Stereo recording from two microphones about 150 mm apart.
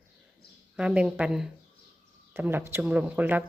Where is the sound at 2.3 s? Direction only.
15° right (ahead or behind).